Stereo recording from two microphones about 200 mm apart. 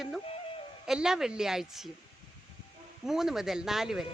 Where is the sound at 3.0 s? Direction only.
Centre (ahead or behind).